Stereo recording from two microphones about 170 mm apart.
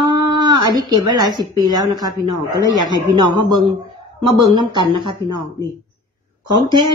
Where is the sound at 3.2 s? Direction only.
30° right (ahead or behind).